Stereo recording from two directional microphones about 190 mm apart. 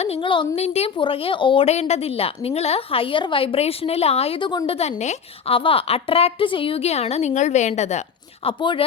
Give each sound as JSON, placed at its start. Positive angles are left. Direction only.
{"t": 0.0, "sound": "a woman's voice", "side_deg": 30}
{"t": 8.4, "sound": "speech", "side_deg": 25}